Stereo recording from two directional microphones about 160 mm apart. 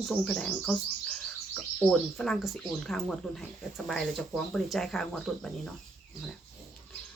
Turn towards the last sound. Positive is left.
turn(degrees=0)  # may be behind; listen again after turning